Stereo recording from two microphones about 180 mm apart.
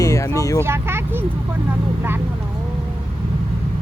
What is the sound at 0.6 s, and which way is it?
Speech, 15° right (ahead or behind).